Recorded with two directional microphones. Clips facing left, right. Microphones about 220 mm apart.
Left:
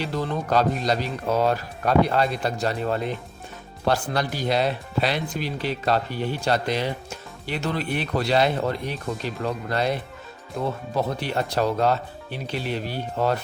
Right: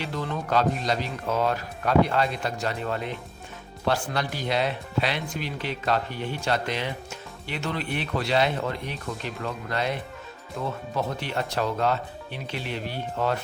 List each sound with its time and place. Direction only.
0.0 s speech: 35° left (ahead or behind)